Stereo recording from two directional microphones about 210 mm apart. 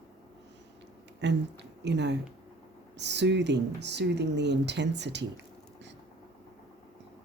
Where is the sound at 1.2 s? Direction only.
55° right (ahead or behind).